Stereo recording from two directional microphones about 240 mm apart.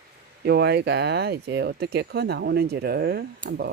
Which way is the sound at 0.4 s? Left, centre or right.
Right.